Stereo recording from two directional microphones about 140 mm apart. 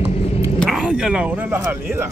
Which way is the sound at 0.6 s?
5° right (ahead or behind).